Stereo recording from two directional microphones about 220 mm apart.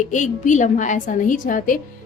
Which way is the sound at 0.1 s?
35° left (ahead or behind).